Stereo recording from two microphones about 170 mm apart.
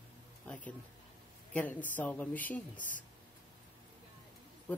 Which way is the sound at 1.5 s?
10° left (ahead or behind).